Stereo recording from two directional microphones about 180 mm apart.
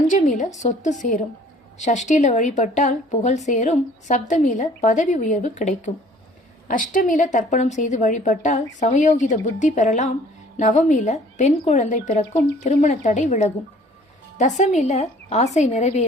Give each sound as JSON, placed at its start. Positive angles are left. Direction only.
{"t": 0.1, "sound": "a woman's voice", "side_deg": 45}